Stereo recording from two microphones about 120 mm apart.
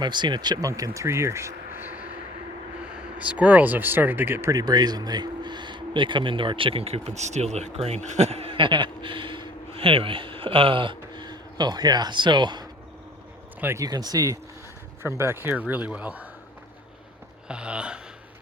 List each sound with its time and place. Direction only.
0.0 s speech: 40° right (ahead or behind); by 2.0 s 20° right (ahead or behind)
3.2 s speech: 10° right (ahead or behind)
4.5 s speech: 35° right (ahead or behind)
13.6 s speech: 20° right (ahead or behind)
13.8 s speech: 35° right (ahead or behind)
15.0 s speech: 20° right (ahead or behind)
17.5 s speech: 10° right (ahead or behind)